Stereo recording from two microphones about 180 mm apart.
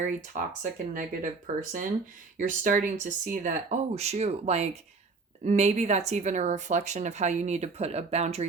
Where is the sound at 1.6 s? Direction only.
50° right (ahead or behind).